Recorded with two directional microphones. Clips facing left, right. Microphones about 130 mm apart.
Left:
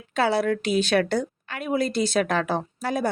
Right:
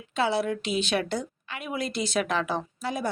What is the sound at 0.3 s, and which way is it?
A woman's voice, 55° left (ahead or behind).